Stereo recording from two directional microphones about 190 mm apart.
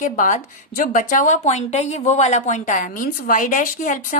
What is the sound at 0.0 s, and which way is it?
A woman's voice, 45° left (ahead or behind).